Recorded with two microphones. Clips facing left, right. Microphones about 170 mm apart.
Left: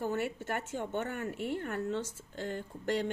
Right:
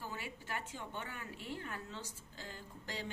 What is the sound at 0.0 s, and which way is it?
A woman's voice, 60° left (ahead or behind).